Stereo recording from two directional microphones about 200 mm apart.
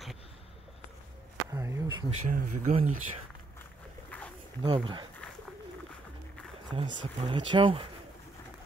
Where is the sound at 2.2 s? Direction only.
40° right (ahead or behind).